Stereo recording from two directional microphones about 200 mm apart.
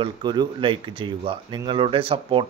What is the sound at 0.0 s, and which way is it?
Speech, 20° right (ahead or behind).